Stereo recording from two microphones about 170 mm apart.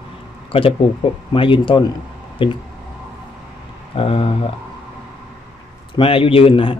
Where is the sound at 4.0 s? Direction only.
35° left (ahead or behind).